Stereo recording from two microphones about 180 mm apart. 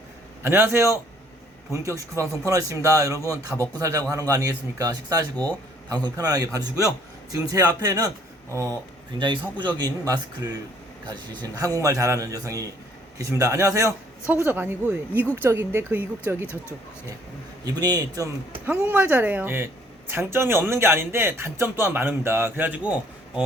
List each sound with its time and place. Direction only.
0.4 s a man's voice: 10° right (ahead or behind)
9.1 s a man's voice: 25° right (ahead or behind)
17.7 s a man's voice: 20° right (ahead or behind)
18.6 s a man's voice: 10° right (ahead or behind)